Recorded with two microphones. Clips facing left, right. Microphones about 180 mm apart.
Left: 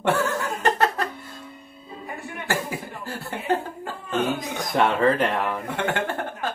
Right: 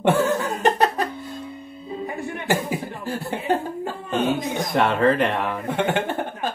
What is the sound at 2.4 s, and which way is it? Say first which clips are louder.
Chuckle: right 4 dB; 20° right (ahead or behind).